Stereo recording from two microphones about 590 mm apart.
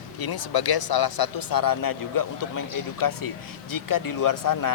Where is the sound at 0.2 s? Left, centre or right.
Left.